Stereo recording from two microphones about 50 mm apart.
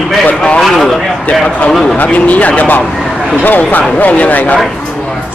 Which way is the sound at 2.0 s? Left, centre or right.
Left.